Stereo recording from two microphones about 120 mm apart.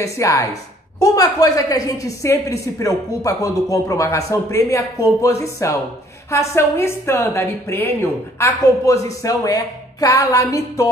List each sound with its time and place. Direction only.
0.0 s a woman's voice: 25° left (ahead or behind)